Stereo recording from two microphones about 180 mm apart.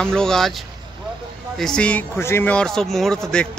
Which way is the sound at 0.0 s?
5° left (ahead or behind).